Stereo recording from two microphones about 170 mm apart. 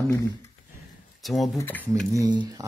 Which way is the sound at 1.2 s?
Centre (ahead or behind).